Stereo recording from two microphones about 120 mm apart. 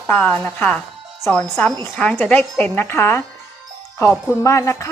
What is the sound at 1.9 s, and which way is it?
A woman's voice, 10° left (ahead or behind).